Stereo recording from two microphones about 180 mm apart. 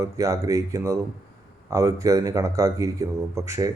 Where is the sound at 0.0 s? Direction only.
15° right (ahead or behind).